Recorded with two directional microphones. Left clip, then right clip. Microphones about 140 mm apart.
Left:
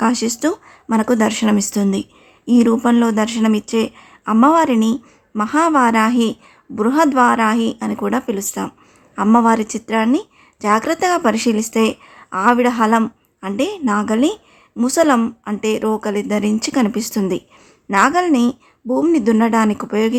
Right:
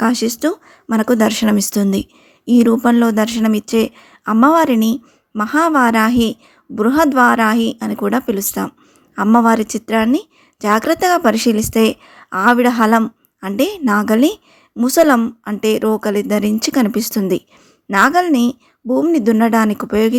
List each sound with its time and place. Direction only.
0.0 s a woman's voice: 20° right (ahead or behind)